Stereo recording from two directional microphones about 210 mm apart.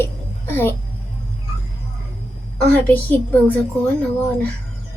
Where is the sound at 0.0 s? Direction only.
10° left (ahead or behind).